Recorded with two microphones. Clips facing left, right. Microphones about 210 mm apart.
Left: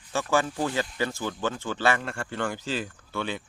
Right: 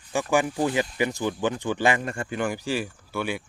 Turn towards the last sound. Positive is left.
turn(degrees=-10)  # may be behind; listen again after turning